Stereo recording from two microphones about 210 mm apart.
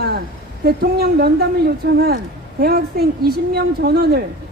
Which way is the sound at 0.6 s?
50° right (ahead or behind).